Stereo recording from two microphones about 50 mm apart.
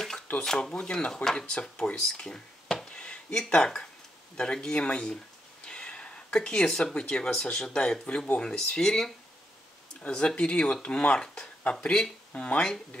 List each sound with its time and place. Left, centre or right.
0.4 s speech: centre
1.1 s speech: centre
1.4 s speech: left
9.9 s speech: left